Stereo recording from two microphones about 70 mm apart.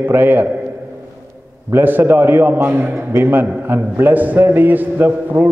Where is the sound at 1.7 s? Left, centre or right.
Right.